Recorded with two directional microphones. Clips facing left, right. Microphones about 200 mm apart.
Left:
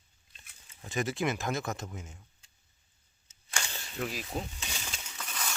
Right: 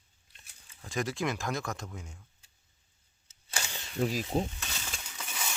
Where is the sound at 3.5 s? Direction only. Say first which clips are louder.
Even; 10° right (ahead or behind).